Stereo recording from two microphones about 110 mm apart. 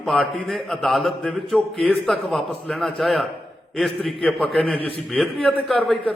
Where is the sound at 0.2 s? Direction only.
5° left (ahead or behind).